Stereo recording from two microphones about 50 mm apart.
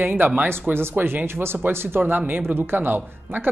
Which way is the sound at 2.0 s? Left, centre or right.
Right.